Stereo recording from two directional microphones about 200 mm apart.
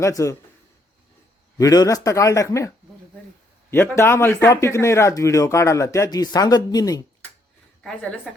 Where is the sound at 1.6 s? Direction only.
20° left (ahead or behind).